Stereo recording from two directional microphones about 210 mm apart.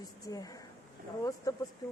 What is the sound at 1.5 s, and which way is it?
Speech, 15° left (ahead or behind).